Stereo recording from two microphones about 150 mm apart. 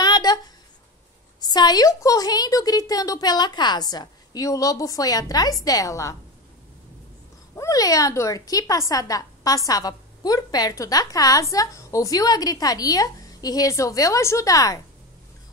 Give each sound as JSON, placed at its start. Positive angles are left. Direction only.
{"t": 0.0, "sound": "a sound", "side_deg": 25}
{"t": 1.4, "sound": "a woman's voice", "side_deg": 25}
{"t": 7.5, "sound": "a woman's voice", "side_deg": 20}